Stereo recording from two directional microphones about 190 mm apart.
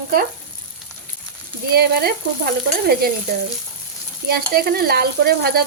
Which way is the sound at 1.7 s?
55° right (ahead or behind).